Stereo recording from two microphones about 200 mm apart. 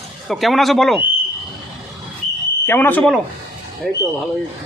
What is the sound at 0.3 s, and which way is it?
Speech, centre (ahead or behind).